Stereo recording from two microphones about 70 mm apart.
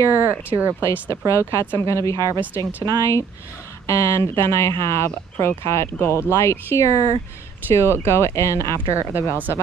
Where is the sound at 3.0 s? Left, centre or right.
Left.